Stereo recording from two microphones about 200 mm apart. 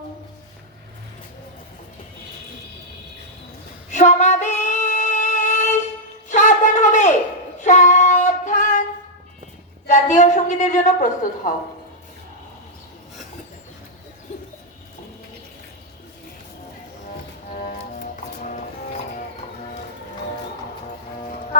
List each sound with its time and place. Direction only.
3.9 s female singing: 35° left (ahead or behind)
6.2 s wind instrument: 35° left (ahead or behind)
7.6 s child singing: 35° left (ahead or behind)
9.8 s a sound: 35° left (ahead or behind)
17.5 s music: 45° left (ahead or behind)